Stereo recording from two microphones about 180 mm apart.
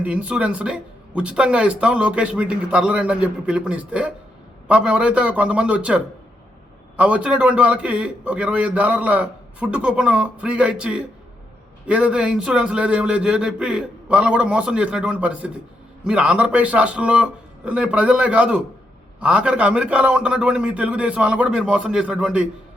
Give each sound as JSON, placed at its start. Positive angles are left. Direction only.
{"t": 0.0, "sound": "a man's voice", "side_deg": -5}